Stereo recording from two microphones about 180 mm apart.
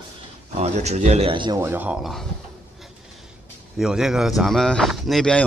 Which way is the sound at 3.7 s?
Centre (ahead or behind).